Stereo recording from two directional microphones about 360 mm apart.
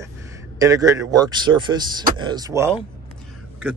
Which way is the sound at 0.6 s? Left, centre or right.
Centre.